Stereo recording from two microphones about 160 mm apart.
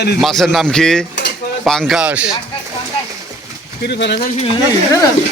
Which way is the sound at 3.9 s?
90° left.